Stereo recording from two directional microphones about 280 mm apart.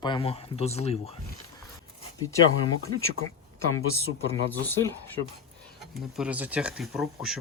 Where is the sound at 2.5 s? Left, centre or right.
Left.